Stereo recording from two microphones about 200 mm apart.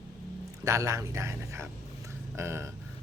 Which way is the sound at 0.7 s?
15° right (ahead or behind).